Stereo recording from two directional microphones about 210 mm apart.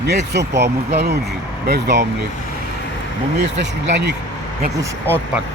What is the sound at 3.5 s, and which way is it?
Speech, 60° right (ahead or behind).